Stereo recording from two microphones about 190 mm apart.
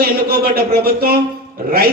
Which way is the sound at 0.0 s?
55° right (ahead or behind).